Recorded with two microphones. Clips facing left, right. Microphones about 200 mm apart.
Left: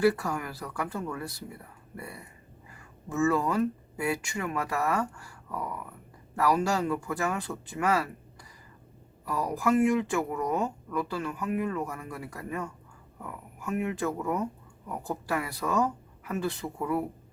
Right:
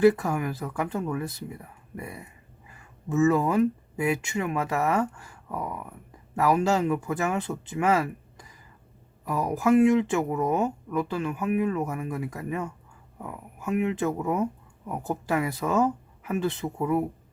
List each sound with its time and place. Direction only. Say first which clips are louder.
0.0 s speech: right 5 dB; 20° right (ahead or behind)